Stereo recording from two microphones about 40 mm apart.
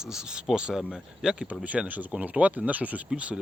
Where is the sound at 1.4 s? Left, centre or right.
Right.